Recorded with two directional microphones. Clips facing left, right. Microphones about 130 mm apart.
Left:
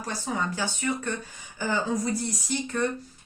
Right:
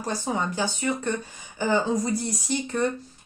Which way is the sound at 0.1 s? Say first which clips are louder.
Right 3 dB; 25° right (ahead or behind).